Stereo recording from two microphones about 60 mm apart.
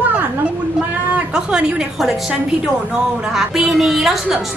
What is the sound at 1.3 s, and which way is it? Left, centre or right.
A woman's voice, centre.